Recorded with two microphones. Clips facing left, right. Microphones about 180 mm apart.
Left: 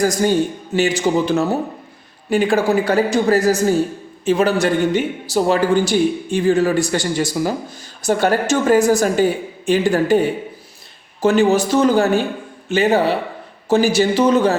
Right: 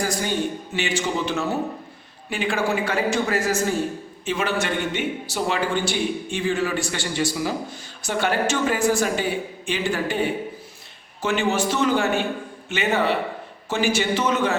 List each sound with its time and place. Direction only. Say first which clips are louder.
0.0 s a man's voice: left 8 dB; 40° left (ahead or behind)